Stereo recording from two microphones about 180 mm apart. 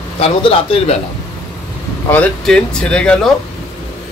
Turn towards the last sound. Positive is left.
turn(degrees=5)  # may be behind; listen again after turning